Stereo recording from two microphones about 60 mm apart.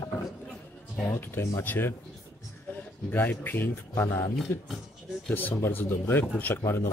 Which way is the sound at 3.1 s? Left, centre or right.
Left.